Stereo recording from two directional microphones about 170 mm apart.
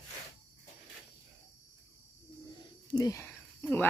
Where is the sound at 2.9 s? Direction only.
25° left (ahead or behind).